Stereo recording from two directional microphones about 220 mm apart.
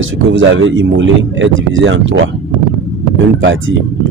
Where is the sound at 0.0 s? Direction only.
60° right (ahead or behind).